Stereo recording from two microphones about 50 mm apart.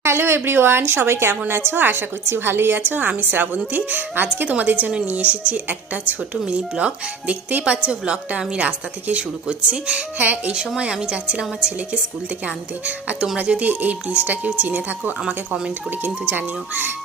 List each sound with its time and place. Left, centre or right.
0.0 s a woman's voice: right
10.2 s a woman's voice: right
10.5 s a woman's voice: centre; by 15.1 s right
15.2 s speech: centre
16.0 s a woman's voice: right